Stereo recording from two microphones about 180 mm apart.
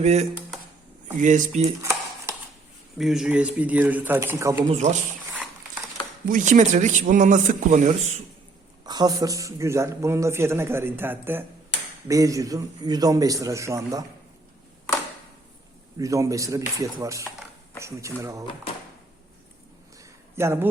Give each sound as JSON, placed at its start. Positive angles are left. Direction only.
{"t": 0.0, "sound": "a man's voice", "side_deg": -35}
{"t": 1.8, "sound": "a sound", "side_deg": -15}
{"t": 3.0, "sound": "a man's voice", "side_deg": 0}
{"t": 4.7, "sound": "speech", "side_deg": -40}
{"t": 6.2, "sound": "a man's voice", "side_deg": -45}
{"t": 8.8, "sound": "a man's voice", "side_deg": -20}
{"t": 16.0, "sound": "a man's voice", "side_deg": -15}
{"t": 20.3, "sound": "speech", "side_deg": -15}